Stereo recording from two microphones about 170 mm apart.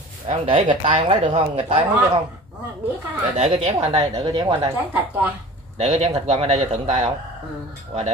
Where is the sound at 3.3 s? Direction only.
40° right (ahead or behind).